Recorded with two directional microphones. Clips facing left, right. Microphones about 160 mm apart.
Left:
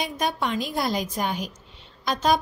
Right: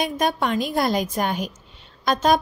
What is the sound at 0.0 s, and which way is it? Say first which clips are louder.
A woman's voice: right 4 dB; 55° right (ahead or behind).